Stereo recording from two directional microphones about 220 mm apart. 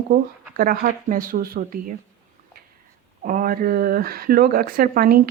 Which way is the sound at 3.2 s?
40° right (ahead or behind).